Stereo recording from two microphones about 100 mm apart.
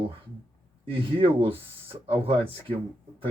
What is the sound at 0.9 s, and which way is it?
Speech, 65° right (ahead or behind).